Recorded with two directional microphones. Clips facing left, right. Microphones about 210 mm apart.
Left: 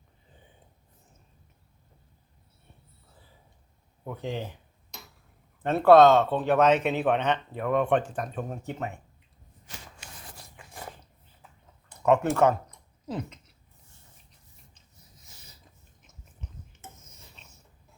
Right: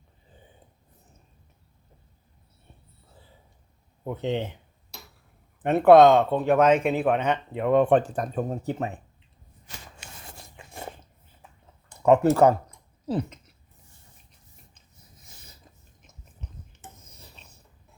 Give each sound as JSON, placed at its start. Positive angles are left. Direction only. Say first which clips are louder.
{"t": 4.0, "sound": "speech", "louder": "right 6 dB", "side_deg": -25}
{"t": 5.6, "sound": "speech", "louder": "right 2 dB", "side_deg": -15}
{"t": 7.5, "sound": "speech", "louder": "right 7 dB", "side_deg": -25}
{"t": 10.2, "sound": "a sound", "louder": "right 2 dB", "side_deg": -25}
{"t": 12.0, "sound": "speech", "louder": "right 4 dB", "side_deg": -35}
{"t": 17.1, "sound": "cutlery", "louder": "right 3 dB", "side_deg": -35}